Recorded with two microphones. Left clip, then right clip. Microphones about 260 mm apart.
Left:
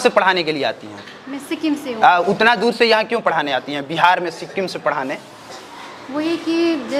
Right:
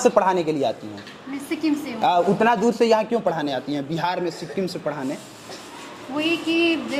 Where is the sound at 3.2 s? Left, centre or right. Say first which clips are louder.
Left 6 dB; left.